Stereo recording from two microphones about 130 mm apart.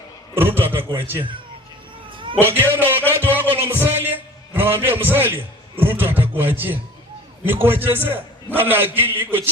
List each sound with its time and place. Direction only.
0.3 s a man's voice: 15° right (ahead or behind)
2.4 s a man's voice: 15° right (ahead or behind)